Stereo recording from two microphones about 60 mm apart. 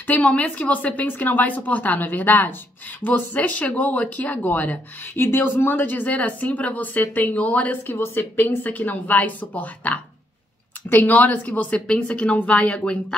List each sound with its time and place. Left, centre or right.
0.0 s speech: left